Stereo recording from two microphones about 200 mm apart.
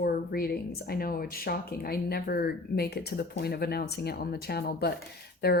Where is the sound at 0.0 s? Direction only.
50° left (ahead or behind).